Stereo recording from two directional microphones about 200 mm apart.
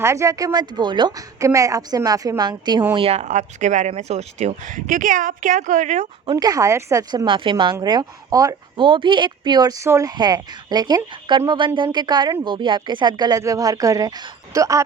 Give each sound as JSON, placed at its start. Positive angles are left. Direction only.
{"t": 0.0, "sound": "a woman's voice", "side_deg": -15}
{"t": 6.2, "sound": "speech", "side_deg": -20}